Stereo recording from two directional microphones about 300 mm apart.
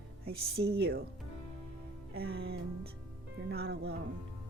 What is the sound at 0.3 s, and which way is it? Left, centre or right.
Speech, centre.